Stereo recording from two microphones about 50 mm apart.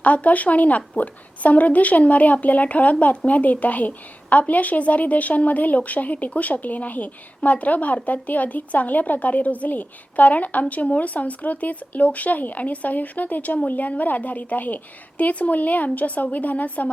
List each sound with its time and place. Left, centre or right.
0.0 s a woman's voice: left